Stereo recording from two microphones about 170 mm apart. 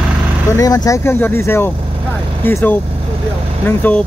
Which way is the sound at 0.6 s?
20° left (ahead or behind).